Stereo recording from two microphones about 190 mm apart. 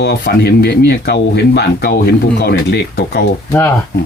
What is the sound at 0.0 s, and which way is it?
Speech, 55° left (ahead or behind).